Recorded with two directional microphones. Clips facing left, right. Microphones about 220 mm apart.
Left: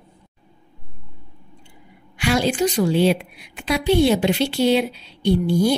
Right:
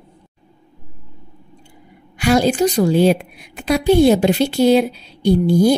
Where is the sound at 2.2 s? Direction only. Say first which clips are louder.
Right 5 dB; 40° right (ahead or behind).